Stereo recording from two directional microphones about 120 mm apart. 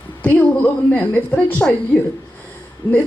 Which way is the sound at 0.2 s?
15° left (ahead or behind).